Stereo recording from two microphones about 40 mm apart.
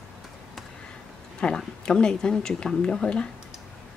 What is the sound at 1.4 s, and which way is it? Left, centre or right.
Speech, left.